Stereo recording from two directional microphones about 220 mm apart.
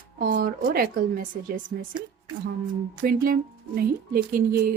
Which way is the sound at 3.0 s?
40° right (ahead or behind).